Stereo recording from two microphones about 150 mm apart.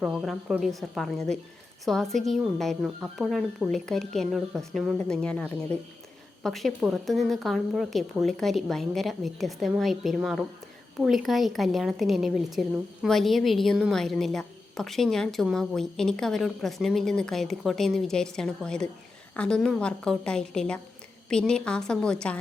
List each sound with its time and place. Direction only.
0.0 s a woman's voice: centre (ahead or behind)
5.7 s speech: 45° right (ahead or behind)
6.4 s a woman's voice: centre (ahead or behind)